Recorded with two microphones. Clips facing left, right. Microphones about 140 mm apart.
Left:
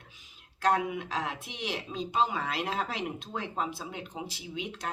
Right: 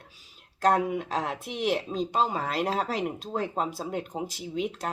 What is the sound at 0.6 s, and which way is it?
Speech, 40° right (ahead or behind).